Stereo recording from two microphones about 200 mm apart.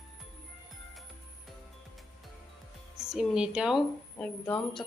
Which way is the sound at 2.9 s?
Centre (ahead or behind).